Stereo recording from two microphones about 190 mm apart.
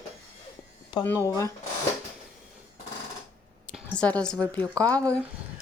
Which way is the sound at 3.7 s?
5° left (ahead or behind).